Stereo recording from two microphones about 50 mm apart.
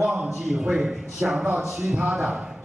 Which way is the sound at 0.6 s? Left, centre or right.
Centre.